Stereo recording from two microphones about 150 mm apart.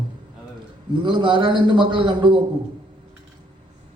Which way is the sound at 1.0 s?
30° right (ahead or behind).